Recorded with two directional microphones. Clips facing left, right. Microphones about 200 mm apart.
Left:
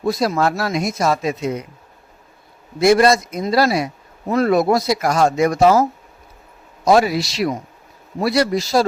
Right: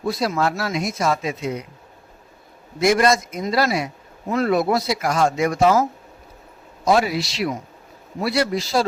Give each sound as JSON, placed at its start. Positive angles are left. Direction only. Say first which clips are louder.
{"t": 0.1, "sound": "speech", "louder": "left 3 dB", "side_deg": 45}
{"t": 2.8, "sound": "speech", "louder": "left 4 dB", "side_deg": 35}
{"t": 6.8, "sound": "speech", "louder": "left 4 dB", "side_deg": 40}